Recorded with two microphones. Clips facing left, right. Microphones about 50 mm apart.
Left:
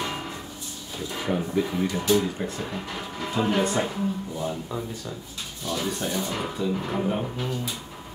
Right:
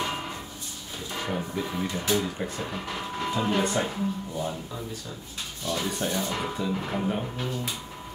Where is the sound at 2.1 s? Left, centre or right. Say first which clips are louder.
Left 3 dB; centre.